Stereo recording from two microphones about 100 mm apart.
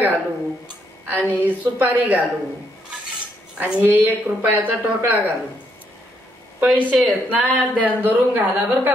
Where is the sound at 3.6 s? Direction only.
20° right (ahead or behind).